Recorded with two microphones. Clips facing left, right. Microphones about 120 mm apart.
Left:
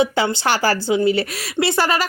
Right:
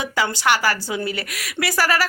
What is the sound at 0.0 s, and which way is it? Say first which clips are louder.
A woman's voice: left 4 dB; 30° left (ahead or behind).